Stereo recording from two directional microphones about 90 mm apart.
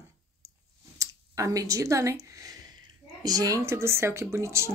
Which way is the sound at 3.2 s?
45° right (ahead or behind).